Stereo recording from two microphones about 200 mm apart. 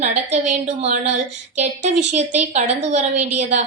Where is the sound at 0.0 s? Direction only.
35° right (ahead or behind).